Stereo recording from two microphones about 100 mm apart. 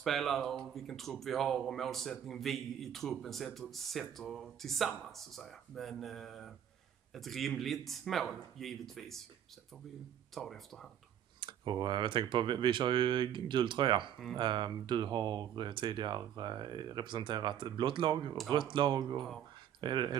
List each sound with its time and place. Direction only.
0.0 s speech: centre (ahead or behind)
10.3 s speech: 5° left (ahead or behind)
11.4 s speech: 50° right (ahead or behind)